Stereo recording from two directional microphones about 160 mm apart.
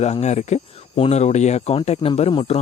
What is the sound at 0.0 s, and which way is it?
Speech, 45° left (ahead or behind).